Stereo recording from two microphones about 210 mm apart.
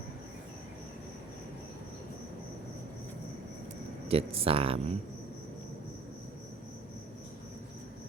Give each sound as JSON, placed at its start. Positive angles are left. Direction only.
{"t": 4.1, "sound": "speech", "side_deg": -25}